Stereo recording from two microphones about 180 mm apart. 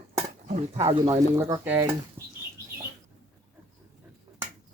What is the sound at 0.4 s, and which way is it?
Speech, 40° right (ahead or behind).